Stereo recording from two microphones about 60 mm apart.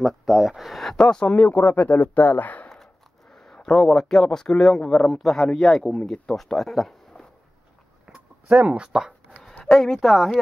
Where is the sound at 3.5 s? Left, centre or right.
Centre.